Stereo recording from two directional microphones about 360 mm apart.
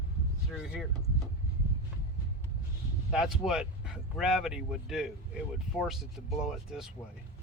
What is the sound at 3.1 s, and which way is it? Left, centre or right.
Speech, centre.